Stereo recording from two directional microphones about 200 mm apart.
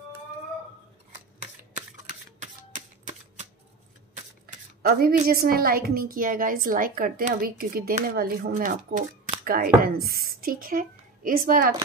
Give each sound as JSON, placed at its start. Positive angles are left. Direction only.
{"t": 1.7, "sound": "typewriter", "side_deg": -40}
{"t": 4.8, "sound": "a woman's voice", "side_deg": -45}